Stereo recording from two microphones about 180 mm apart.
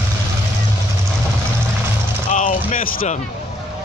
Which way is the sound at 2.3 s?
45° left (ahead or behind).